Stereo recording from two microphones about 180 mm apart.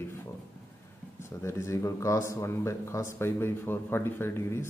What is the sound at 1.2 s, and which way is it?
Speech, 15° left (ahead or behind).